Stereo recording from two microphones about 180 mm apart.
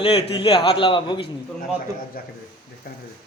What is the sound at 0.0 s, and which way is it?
A man's voice, 30° left (ahead or behind).